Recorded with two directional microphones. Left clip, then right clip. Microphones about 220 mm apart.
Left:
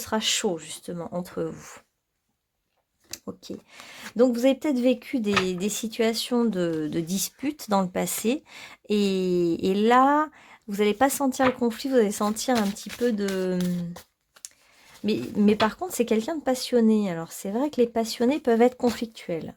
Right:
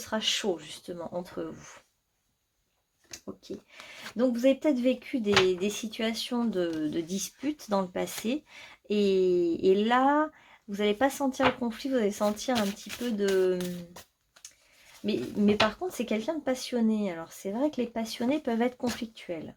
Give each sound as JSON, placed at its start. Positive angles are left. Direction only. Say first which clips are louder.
{"t": 0.0, "sound": "speech", "louder": "left 4 dB", "side_deg": 45}
{"t": 3.1, "sound": "speech", "louder": "left 4 dB", "side_deg": 45}
{"t": 15.0, "sound": "speech", "louder": "left 4 dB", "side_deg": 45}